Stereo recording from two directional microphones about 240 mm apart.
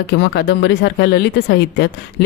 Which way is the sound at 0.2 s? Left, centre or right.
Left.